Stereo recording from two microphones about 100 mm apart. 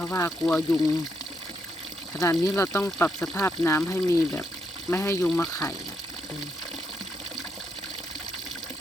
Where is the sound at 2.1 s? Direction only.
35° left (ahead or behind).